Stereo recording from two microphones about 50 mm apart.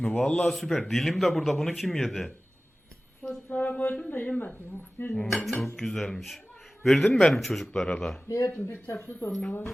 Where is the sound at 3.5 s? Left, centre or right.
Left.